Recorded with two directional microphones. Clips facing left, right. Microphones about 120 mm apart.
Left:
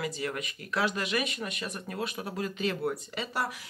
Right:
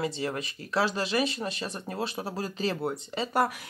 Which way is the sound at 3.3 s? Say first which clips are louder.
Right 8 dB; 50° right (ahead or behind).